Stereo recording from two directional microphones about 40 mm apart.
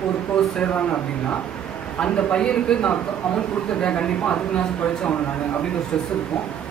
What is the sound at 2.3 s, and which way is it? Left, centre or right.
Speech, left.